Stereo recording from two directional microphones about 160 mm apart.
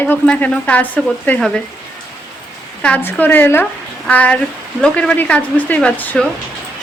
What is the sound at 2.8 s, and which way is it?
A woman's voice, 10° left (ahead or behind).